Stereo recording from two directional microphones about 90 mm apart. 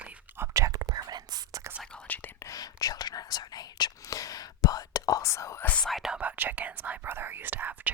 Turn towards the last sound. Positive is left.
turn(degrees=-20)  # may be behind; listen again after turning